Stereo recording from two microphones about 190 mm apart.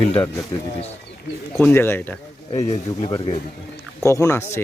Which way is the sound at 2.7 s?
30° left (ahead or behind).